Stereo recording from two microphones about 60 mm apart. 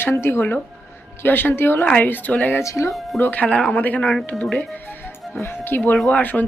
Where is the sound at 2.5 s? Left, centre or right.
Left.